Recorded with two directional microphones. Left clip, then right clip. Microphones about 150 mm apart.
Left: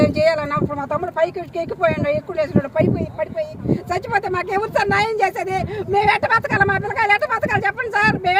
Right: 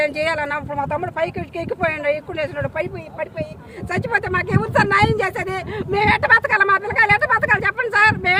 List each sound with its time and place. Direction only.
0.0 s speech: 15° right (ahead or behind)
3.9 s speech: 5° right (ahead or behind)